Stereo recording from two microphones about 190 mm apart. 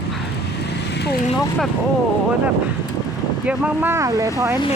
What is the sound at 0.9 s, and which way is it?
Vehicle, 60° left (ahead or behind).